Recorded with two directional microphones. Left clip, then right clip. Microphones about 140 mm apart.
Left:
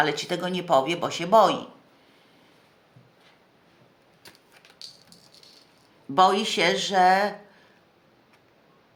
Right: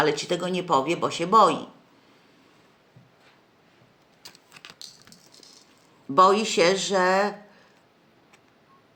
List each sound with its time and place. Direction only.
0.0 s speech: 15° left (ahead or behind)
6.1 s speech: 10° left (ahead or behind)